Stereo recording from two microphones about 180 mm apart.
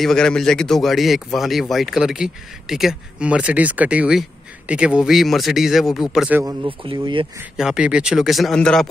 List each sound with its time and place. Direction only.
0.0 s speech: 5° left (ahead or behind)
6.4 s speech: 25° right (ahead or behind)
7.5 s speech: 5° right (ahead or behind)